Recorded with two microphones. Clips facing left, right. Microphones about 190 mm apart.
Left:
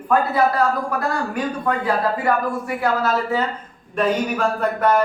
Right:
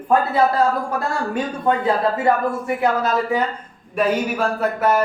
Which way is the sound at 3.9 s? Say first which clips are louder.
Even; 10° right (ahead or behind).